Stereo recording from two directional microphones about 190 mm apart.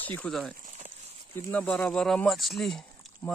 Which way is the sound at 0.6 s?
40° right (ahead or behind).